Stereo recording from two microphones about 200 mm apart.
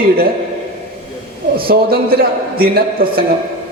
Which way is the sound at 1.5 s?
50° right (ahead or behind).